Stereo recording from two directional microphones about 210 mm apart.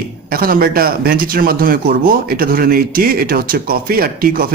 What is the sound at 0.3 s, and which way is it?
Speech, 45° right (ahead or behind).